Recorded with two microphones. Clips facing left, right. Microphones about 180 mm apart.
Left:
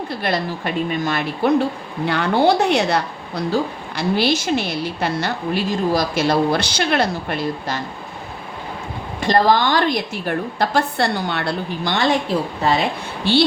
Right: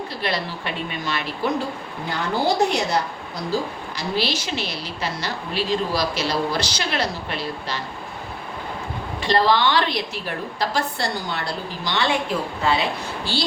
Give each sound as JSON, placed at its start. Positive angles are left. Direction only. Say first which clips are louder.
{"t": 0.2, "sound": "a woman's voice", "louder": "left 4 dB", "side_deg": 50}
{"t": 1.4, "sound": "a woman's voice", "louder": "left 8 dB", "side_deg": 60}
{"t": 9.2, "sound": "a woman's voice", "louder": "left 3 dB", "side_deg": 45}
{"t": 13.3, "sound": "a woman's voice", "louder": "left 11 dB", "side_deg": 60}